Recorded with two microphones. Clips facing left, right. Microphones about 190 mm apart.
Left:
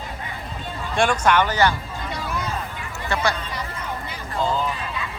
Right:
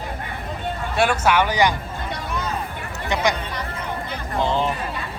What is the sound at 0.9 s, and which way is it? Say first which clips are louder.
Speech: even; 5° right (ahead or behind).